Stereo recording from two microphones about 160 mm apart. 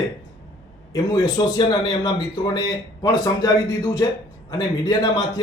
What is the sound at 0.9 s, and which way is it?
Speech, 25° left (ahead or behind).